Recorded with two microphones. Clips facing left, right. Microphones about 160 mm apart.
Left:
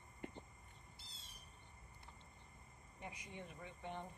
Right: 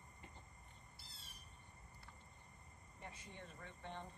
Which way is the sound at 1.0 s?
20° left (ahead or behind).